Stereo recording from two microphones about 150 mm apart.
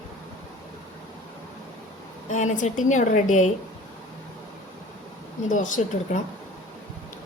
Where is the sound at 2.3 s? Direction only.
55° left (ahead or behind).